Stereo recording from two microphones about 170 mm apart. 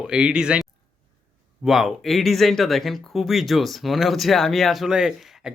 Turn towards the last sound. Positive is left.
turn(degrees=0)  # may be behind; listen again after turning